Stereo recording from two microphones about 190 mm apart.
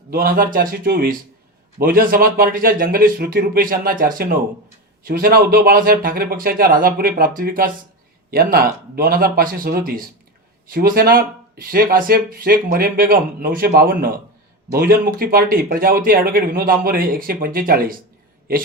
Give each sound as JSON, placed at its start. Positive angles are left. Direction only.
{"t": 0.1, "sound": "speech", "side_deg": -50}